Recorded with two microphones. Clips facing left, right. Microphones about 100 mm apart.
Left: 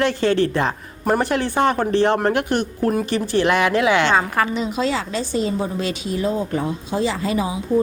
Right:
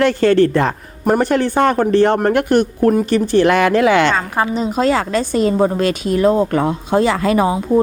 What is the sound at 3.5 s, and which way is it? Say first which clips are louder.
Speech: right 2 dB; 45° right (ahead or behind).